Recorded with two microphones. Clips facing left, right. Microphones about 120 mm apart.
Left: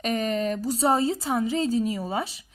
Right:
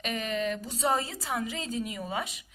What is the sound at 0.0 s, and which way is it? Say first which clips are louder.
A woman's voice: left 6 dB; 40° left (ahead or behind).